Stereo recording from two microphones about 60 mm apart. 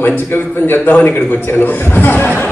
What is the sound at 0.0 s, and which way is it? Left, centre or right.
Speech, left.